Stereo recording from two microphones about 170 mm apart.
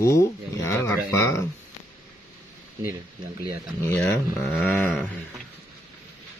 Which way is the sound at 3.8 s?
15° left (ahead or behind).